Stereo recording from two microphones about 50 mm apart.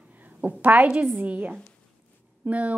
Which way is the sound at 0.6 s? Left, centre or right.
Right.